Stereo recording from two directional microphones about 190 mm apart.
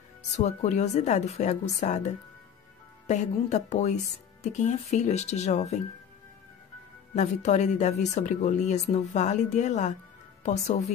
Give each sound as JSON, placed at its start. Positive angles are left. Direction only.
{"t": 0.3, "sound": "a woman's voice", "side_deg": 35}
{"t": 7.2, "sound": "a woman's voice", "side_deg": 40}